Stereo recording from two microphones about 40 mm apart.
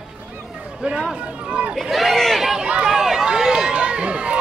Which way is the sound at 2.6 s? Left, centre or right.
Right.